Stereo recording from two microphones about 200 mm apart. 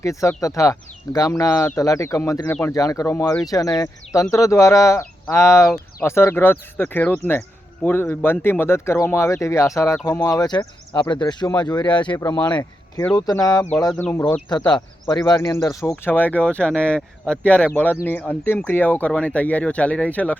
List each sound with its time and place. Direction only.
0.0 s speech: 15° left (ahead or behind)
13.1 s speech: 20° left (ahead or behind)